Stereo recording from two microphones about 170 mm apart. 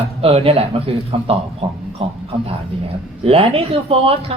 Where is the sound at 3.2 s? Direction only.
35° right (ahead or behind).